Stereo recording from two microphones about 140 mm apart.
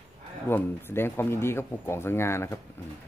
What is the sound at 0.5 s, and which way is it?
Speech, 15° left (ahead or behind).